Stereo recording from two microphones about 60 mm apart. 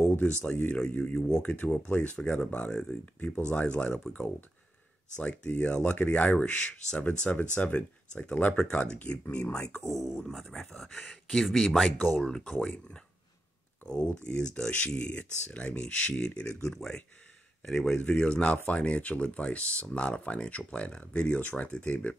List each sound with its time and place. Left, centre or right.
0.4 s speech: left
4.0 s speech: left
9.8 s speech: centre
11.4 s speech: centre
12.2 s speech: centre
13.8 s speech: centre
18.0 s speech: centre